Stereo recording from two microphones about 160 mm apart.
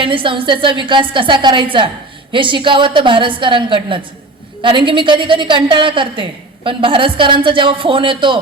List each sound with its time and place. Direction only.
0.0 s a woman's voice: 30° right (ahead or behind)